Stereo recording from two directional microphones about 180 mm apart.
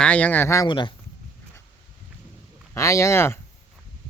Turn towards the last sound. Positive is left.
turn(degrees=15)  # may be behind; listen again after turning